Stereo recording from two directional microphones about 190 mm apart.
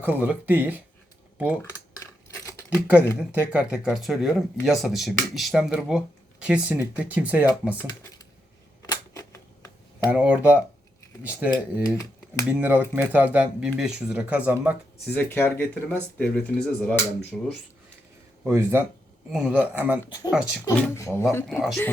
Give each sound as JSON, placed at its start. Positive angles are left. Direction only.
{"t": 0.0, "sound": "speech", "side_deg": -10}
{"t": 2.6, "sound": "speech", "side_deg": -5}
{"t": 7.9, "sound": "computer keyboard", "side_deg": 20}
{"t": 8.9, "sound": "a sound", "side_deg": 15}
{"t": 10.1, "sound": "speech", "side_deg": -10}
{"t": 15.0, "sound": "speech", "side_deg": 10}
{"t": 18.4, "sound": "speech", "side_deg": -10}
{"t": 20.1, "sound": "speech", "side_deg": 20}
{"t": 20.3, "sound": "speech", "side_deg": -5}
{"t": 20.7, "sound": "speech", "side_deg": 15}
{"t": 21.3, "sound": "speech", "side_deg": 0}